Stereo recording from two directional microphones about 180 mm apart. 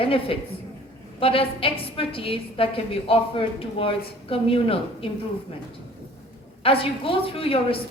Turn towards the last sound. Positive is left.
turn(degrees=30)  # may be behind; listen again after turning